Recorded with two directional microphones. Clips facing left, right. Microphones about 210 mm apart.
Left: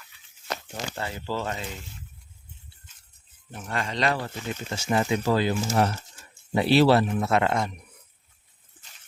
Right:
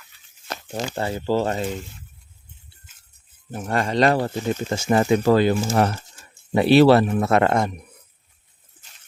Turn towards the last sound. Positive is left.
turn(degrees=-50)  # may be behind; listen again after turning